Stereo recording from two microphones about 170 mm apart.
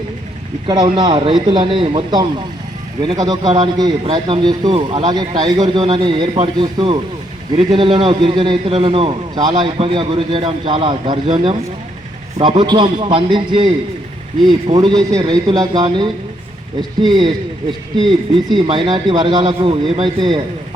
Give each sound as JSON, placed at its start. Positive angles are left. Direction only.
{"t": 0.7, "sound": "a man's voice", "side_deg": -25}
{"t": 14.8, "sound": "a man's voice", "side_deg": -25}
{"t": 18.7, "sound": "a man's voice", "side_deg": -30}